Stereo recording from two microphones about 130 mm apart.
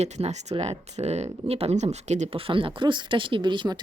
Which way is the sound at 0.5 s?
40° right (ahead or behind).